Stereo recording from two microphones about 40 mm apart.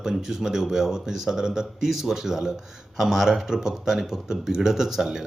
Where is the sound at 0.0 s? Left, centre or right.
Centre.